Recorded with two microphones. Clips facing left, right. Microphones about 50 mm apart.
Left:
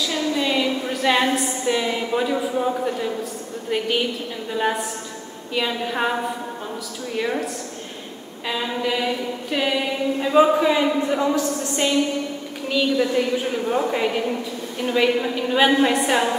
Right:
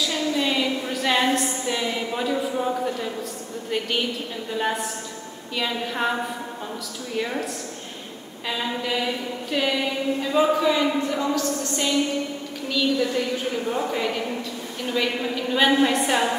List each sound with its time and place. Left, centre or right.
0.1 s a woman's voice: centre
10.2 s a woman's voice: centre